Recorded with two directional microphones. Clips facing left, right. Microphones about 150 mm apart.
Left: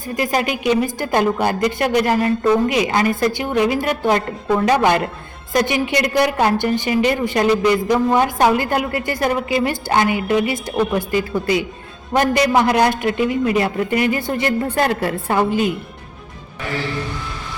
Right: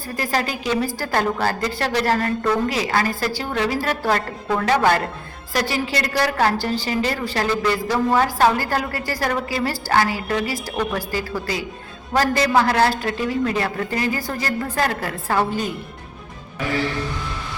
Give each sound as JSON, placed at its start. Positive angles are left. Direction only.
{"t": 0.2, "sound": "a woman's voice", "side_deg": 15}